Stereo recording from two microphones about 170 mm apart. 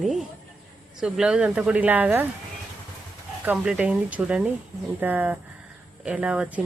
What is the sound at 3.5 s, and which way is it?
Speech, 5° right (ahead or behind).